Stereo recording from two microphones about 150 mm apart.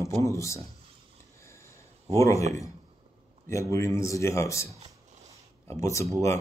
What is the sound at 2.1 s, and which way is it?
Speech, 20° left (ahead or behind).